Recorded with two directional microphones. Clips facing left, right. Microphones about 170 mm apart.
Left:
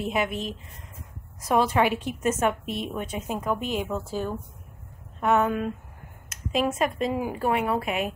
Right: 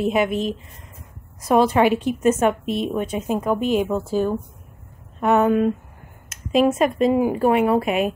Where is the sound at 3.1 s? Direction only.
25° right (ahead or behind).